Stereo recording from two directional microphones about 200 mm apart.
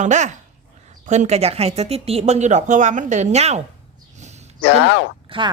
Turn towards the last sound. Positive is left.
turn(degrees=-25)  # may be behind; listen again after turning